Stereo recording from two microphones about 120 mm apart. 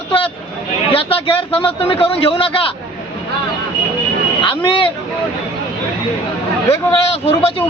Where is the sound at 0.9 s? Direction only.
50° left (ahead or behind).